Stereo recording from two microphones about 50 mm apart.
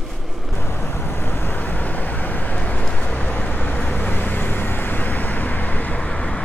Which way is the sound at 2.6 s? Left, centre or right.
Left.